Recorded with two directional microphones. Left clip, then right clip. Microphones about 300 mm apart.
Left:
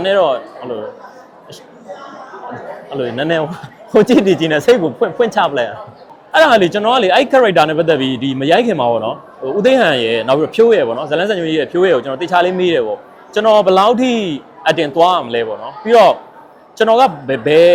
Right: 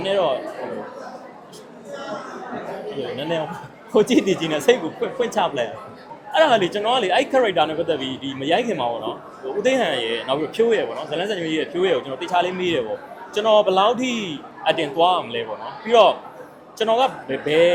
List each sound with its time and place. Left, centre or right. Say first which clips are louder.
0.0 s speech: left 8 dB; left
3.2 s speech: left 10 dB; left